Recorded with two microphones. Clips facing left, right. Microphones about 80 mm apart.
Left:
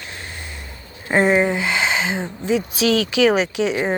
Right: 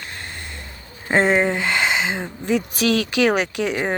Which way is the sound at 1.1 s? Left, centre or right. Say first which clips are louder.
Left 1 dB; right.